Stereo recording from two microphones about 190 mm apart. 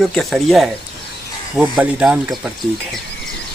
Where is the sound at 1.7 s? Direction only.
5° right (ahead or behind).